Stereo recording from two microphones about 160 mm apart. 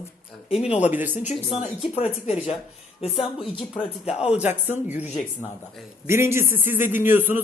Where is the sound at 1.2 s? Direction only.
45° left (ahead or behind).